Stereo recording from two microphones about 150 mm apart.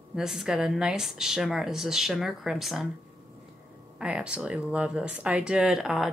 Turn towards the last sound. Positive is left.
turn(degrees=-5)  # may be behind; listen again after turning